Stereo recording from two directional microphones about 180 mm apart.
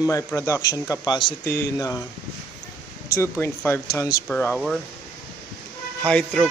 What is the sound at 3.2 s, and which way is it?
Speech, 10° left (ahead or behind).